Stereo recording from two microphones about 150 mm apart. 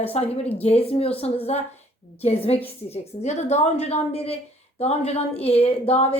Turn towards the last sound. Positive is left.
turn(degrees=40)  # may be behind; listen again after turning